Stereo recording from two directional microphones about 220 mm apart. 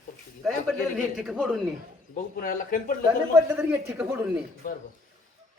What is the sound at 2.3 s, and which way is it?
Speech, 40° left (ahead or behind).